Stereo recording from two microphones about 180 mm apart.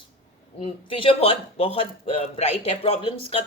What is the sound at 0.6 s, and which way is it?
A woman's voice, 30° left (ahead or behind).